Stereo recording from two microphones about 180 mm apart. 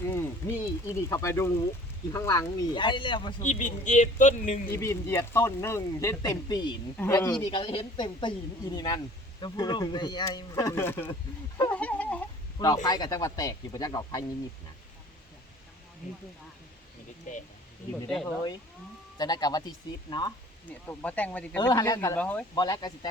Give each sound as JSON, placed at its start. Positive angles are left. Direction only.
{"t": 0.0, "sound": "speech", "side_deg": 15}
{"t": 3.4, "sound": "speech", "side_deg": 45}
{"t": 4.7, "sound": "speech", "side_deg": 15}
{"t": 6.9, "sound": "speech", "side_deg": 10}
{"t": 7.3, "sound": "speech", "side_deg": 25}
{"t": 11.1, "sound": "speech", "side_deg": 25}
{"t": 11.7, "sound": "a sound", "side_deg": 10}
{"t": 12.8, "sound": "speech", "side_deg": 25}
{"t": 17.3, "sound": "speech", "side_deg": 45}
{"t": 18.3, "sound": "speech", "side_deg": 20}
{"t": 20.7, "sound": "speech", "side_deg": 10}
{"t": 21.6, "sound": "speech", "side_deg": 20}
{"t": 22.5, "sound": "speech", "side_deg": 20}